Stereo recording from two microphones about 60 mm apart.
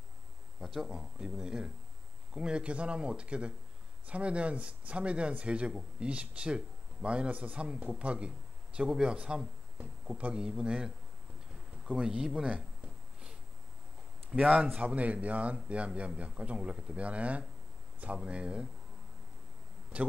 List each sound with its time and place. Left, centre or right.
0.6 s speech: centre
14.3 s speech: centre